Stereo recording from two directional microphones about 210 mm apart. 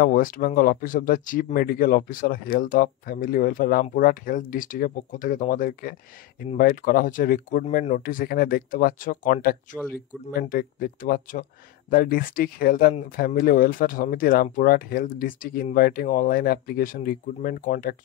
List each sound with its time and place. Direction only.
0.0 s speech: 40° left (ahead or behind)